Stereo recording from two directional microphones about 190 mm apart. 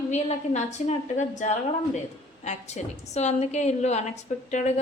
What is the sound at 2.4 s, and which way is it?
A woman's voice, 35° left (ahead or behind).